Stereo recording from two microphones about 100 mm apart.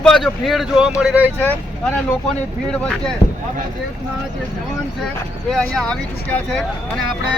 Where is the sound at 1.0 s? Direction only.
15° right (ahead or behind).